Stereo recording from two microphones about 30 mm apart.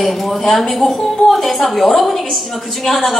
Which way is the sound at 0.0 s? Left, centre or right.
Centre.